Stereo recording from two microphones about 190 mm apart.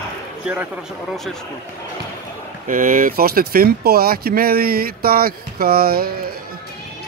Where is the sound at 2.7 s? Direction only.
45° right (ahead or behind).